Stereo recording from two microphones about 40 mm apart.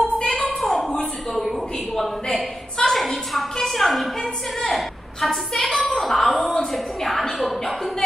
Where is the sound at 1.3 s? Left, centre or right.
Centre.